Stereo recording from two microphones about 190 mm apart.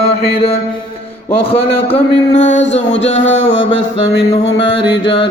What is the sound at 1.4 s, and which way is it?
Speech, 30° left (ahead or behind).